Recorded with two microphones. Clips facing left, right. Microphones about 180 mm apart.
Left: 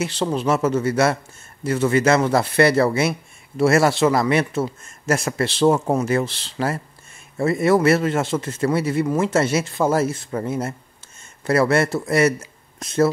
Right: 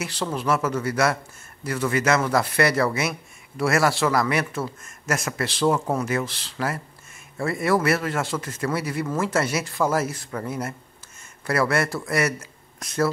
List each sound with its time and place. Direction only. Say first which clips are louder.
0.0 s speech: left 5 dB; 25° left (ahead or behind)